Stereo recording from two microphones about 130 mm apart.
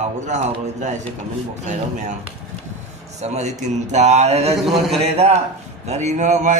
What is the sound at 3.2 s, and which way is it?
A man's voice, 60° right (ahead or behind).